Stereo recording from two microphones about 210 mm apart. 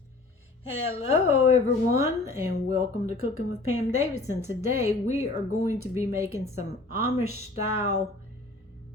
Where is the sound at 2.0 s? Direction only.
15° right (ahead or behind).